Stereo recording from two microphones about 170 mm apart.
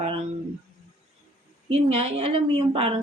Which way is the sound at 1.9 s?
35° right (ahead or behind).